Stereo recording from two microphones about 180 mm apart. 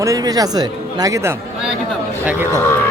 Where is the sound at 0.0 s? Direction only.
20° right (ahead or behind).